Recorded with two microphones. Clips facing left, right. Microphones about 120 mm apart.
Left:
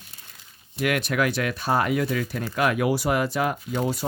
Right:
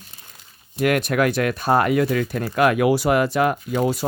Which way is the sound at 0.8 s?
45° right (ahead or behind).